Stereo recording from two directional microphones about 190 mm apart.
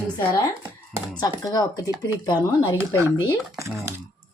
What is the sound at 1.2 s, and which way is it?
Speech, 20° left (ahead or behind).